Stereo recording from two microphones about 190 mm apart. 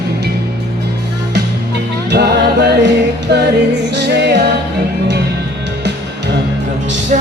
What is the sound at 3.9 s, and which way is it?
Music, 60° right (ahead or behind).